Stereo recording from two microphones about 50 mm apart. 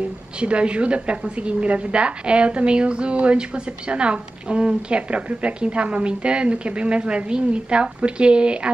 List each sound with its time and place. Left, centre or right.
0.4 s a woman's voice: right